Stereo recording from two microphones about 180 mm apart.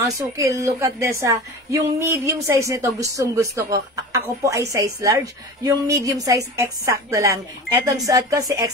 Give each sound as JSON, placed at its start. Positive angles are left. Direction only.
{"t": 0.0, "sound": "a woman's voice", "side_deg": -15}